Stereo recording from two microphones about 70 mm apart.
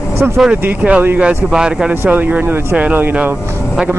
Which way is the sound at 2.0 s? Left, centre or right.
Right.